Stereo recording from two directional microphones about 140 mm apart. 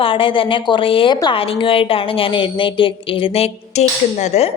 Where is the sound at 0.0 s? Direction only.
40° left (ahead or behind).